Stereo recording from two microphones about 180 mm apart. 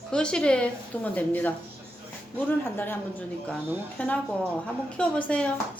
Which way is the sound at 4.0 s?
10° left (ahead or behind).